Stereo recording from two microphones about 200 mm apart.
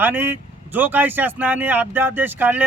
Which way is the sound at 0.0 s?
10° right (ahead or behind).